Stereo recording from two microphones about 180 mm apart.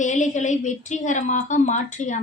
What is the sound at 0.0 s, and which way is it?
A woman's voice, 40° left (ahead or behind).